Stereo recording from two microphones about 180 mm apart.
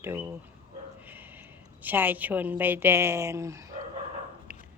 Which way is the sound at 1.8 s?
10° right (ahead or behind).